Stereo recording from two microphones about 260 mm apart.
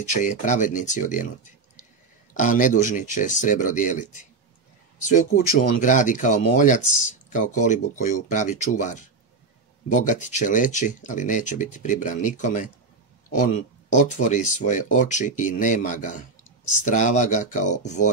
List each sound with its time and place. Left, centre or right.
0.1 s speech: left
13.9 s speech: left